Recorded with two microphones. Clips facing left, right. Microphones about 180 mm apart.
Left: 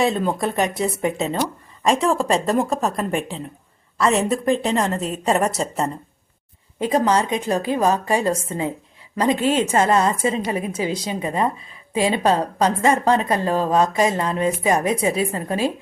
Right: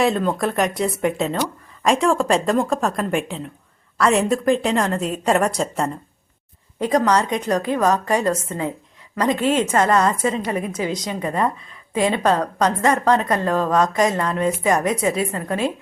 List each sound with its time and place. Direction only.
0.0 s speech: centre (ahead or behind)
6.7 s a woman's voice: 25° left (ahead or behind)